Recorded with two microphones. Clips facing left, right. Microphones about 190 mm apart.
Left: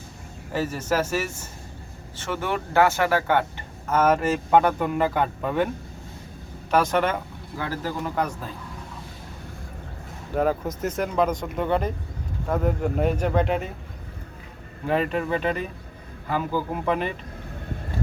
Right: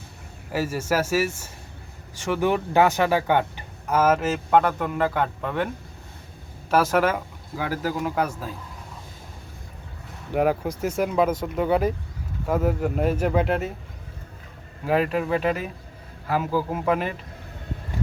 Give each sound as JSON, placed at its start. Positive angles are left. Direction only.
{"t": 0.5, "sound": "speech", "side_deg": -10}
{"t": 6.7, "sound": "speech", "side_deg": -5}
{"t": 10.3, "sound": "speech", "side_deg": -10}
{"t": 14.8, "sound": "speech", "side_deg": -5}